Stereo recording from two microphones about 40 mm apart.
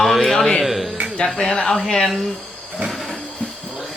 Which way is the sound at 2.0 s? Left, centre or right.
Centre.